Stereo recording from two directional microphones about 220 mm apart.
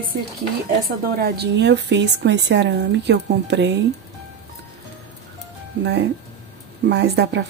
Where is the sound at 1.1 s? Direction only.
45° right (ahead or behind).